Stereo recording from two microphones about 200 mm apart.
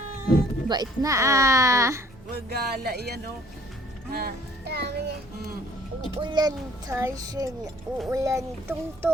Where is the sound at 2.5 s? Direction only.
55° right (ahead or behind).